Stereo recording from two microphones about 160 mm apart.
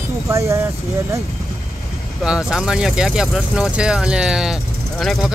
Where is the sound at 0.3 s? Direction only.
20° right (ahead or behind).